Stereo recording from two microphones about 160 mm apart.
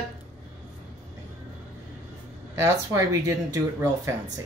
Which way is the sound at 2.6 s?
20° right (ahead or behind).